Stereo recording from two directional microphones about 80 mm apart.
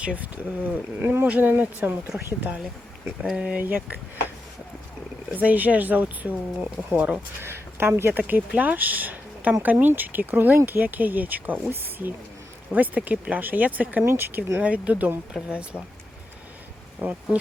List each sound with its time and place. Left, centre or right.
0.6 s speech: right
3.2 s speech: centre
5.3 s speech: centre
7.4 s speech: right
8.3 s speech: right
14.0 s speech: right
14.6 s speech: centre
17.0 s speech: right